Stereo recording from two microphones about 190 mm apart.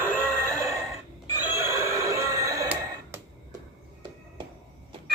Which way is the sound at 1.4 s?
10° right (ahead or behind).